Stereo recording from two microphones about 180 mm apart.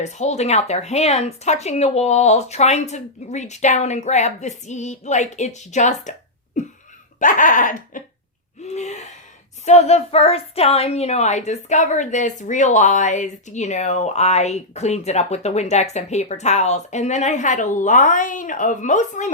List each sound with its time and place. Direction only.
0.0 s a woman's voice: 40° left (ahead or behind)
7.2 s a sound: 45° left (ahead or behind)
8.6 s a woman's voice: 40° left (ahead or behind)